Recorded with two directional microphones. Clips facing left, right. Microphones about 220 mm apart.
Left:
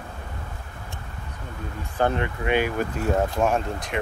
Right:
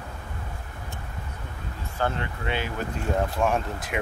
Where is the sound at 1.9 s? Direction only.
20° left (ahead or behind).